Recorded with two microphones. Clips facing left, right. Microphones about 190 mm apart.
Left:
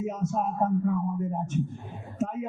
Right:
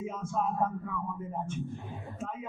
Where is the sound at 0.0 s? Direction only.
40° left (ahead or behind).